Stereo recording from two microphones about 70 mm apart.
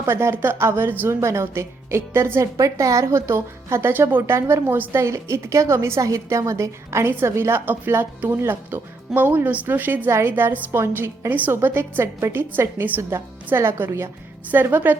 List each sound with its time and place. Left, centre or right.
0.0 s a woman's voice: right
4.2 s a woman's voice: right
7.0 s a woman's voice: right
10.1 s a woman's voice: right